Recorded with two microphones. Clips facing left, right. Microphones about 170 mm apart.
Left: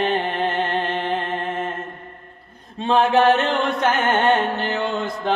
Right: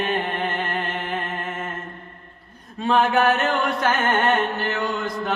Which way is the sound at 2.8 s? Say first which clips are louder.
Left 2 dB; 25° left (ahead or behind).